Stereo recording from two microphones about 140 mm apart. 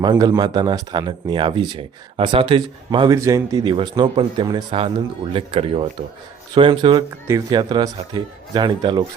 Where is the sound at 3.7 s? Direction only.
35° right (ahead or behind).